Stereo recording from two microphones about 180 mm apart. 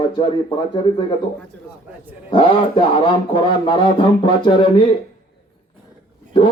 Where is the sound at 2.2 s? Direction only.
30° left (ahead or behind).